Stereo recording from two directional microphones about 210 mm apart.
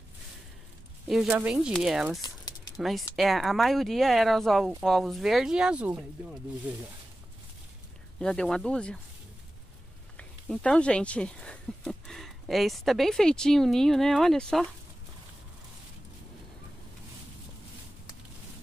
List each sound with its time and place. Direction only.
1.0 s speech: centre (ahead or behind)
2.2 s a sound: 20° left (ahead or behind)
2.8 s speech: centre (ahead or behind)
8.2 s speech: 5° left (ahead or behind)
10.1 s speech: 5° left (ahead or behind)